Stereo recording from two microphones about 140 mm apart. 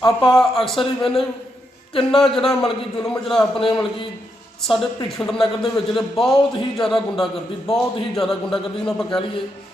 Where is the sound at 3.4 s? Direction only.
40° left (ahead or behind).